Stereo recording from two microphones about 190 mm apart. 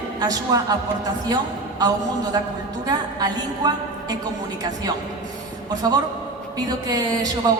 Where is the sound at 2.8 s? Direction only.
20° right (ahead or behind).